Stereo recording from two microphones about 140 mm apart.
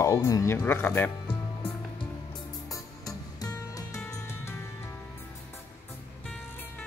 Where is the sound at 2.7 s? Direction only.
25° left (ahead or behind).